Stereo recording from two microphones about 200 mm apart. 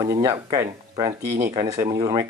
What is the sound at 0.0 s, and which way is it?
Speech, 15° right (ahead or behind).